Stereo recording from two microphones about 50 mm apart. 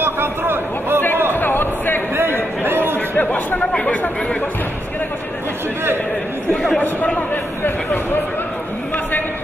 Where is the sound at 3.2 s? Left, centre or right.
Left.